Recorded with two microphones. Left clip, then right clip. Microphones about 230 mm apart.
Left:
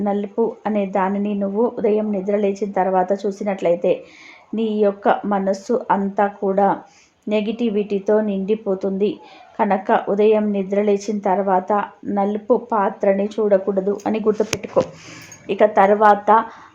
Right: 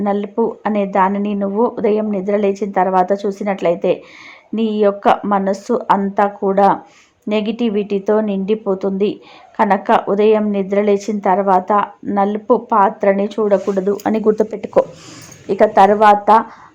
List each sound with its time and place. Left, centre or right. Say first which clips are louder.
0.0 s a woman's voice: right 3 dB; right